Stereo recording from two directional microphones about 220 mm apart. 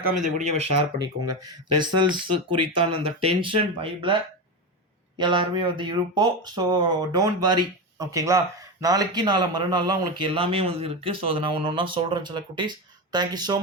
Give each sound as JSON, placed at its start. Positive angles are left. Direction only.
{"t": 0.0, "sound": "speech", "side_deg": -35}
{"t": 0.9, "sound": "a man's voice", "side_deg": -20}
{"t": 2.3, "sound": "speech", "side_deg": -90}
{"t": 3.2, "sound": "a man's voice", "side_deg": -25}